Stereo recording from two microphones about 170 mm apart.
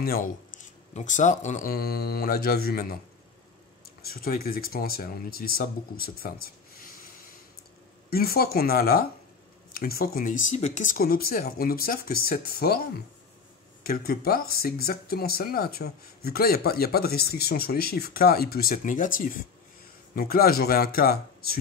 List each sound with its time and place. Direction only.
0.0 s speech: 55° left (ahead or behind)
1.7 s speech: 65° left (ahead or behind)
4.0 s speech: 60° left (ahead or behind)
8.1 s speech: 65° left (ahead or behind)
13.8 s speech: 60° left (ahead or behind)